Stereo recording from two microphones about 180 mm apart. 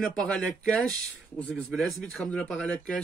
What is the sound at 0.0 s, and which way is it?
Speech, 5° left (ahead or behind).